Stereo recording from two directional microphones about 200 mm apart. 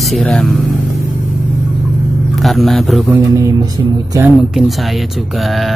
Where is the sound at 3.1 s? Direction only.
15° right (ahead or behind).